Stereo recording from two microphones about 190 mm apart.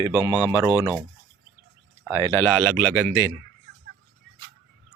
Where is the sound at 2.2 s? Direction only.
15° left (ahead or behind).